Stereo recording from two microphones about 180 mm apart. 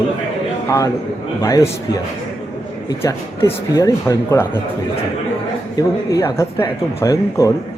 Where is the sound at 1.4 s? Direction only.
20° left (ahead or behind).